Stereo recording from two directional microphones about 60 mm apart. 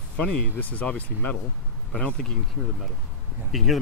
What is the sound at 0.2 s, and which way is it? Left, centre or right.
Speech, left.